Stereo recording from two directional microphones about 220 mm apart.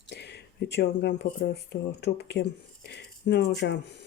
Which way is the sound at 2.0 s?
50° left (ahead or behind).